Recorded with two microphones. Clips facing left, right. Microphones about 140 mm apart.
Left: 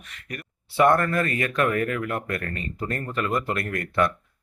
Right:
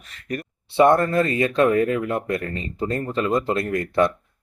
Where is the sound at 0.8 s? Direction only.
25° right (ahead or behind).